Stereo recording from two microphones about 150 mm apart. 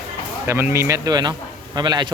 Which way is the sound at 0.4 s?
15° right (ahead or behind).